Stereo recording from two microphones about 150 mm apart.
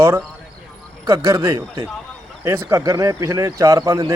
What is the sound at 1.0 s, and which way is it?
Speech, 20° right (ahead or behind).